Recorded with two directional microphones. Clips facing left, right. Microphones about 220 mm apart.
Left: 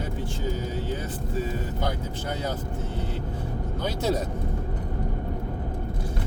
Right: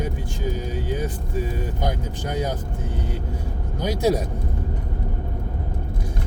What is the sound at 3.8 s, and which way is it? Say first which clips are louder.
Speech: right 6 dB; 10° right (ahead or behind).